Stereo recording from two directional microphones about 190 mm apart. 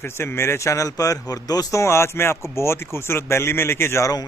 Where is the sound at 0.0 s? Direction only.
15° left (ahead or behind).